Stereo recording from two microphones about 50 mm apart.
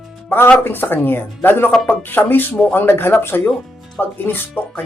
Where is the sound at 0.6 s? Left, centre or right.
Left.